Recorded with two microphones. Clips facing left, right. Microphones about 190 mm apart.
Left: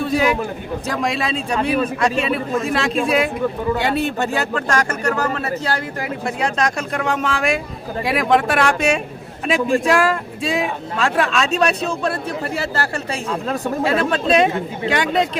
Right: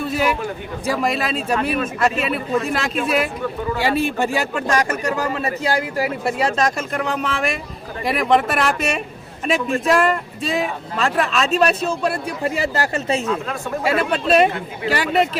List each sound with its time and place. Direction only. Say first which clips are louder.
0.0 s a sound: left 3 dB; 5° right (ahead or behind)
0.9 s speech: right 2 dB; centre (ahead or behind)
12.5 s speech: right 2 dB; 15° right (ahead or behind)
13.8 s speech: even; 10° right (ahead or behind)